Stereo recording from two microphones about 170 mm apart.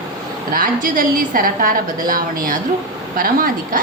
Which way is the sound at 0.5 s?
55° right (ahead or behind).